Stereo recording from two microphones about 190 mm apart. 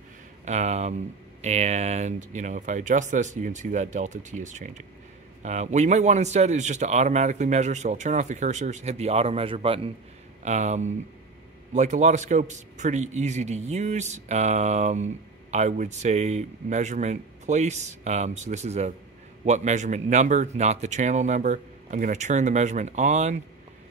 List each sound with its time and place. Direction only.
0.5 s a man's voice: 35° right (ahead or behind)